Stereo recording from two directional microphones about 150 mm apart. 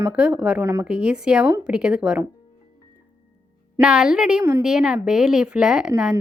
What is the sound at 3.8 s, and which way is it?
A woman's voice, 5° right (ahead or behind).